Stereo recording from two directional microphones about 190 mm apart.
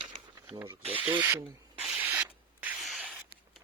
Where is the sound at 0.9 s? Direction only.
25° right (ahead or behind).